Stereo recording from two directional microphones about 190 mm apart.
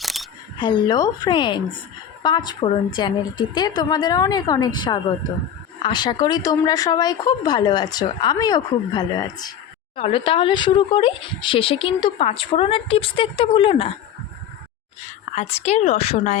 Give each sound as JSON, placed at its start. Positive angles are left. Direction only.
{"t": 0.0, "sound": "single-lens reflex camera", "side_deg": 0}
{"t": 0.6, "sound": "speech", "side_deg": 20}
{"t": 15.4, "sound": "speech", "side_deg": 35}